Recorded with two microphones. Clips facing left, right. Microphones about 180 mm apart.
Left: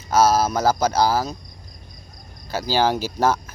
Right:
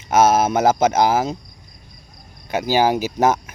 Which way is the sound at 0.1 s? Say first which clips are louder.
Right 2 dB; 25° right (ahead or behind).